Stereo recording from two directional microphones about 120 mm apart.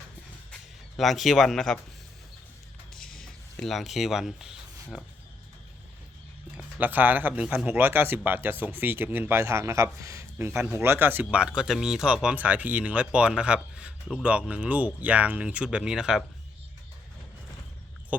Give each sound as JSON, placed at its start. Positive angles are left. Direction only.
{"t": 0.9, "sound": "speech", "side_deg": 0}
{"t": 3.6, "sound": "speech", "side_deg": 0}
{"t": 6.7, "sound": "speech", "side_deg": -15}
{"t": 18.1, "sound": "speech", "side_deg": -10}